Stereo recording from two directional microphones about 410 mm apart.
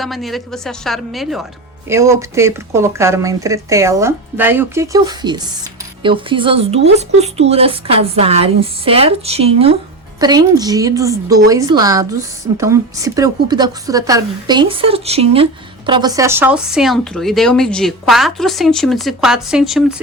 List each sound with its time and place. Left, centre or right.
0.0 s speech: centre